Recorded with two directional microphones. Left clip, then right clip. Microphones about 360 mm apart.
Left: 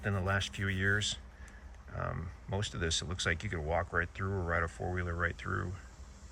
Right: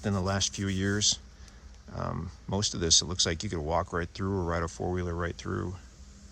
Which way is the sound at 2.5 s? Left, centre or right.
Centre.